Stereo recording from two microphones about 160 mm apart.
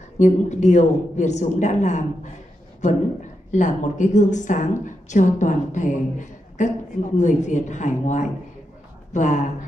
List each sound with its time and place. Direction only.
0.2 s a woman's voice: 50° left (ahead or behind)